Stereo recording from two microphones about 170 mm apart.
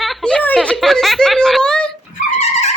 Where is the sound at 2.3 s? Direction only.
40° left (ahead or behind).